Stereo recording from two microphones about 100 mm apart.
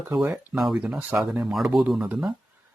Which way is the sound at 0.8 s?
15° right (ahead or behind).